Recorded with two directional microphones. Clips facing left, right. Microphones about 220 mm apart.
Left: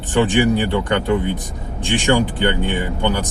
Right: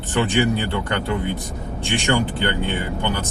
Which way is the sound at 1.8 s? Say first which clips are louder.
Left 4 dB; 15° left (ahead or behind).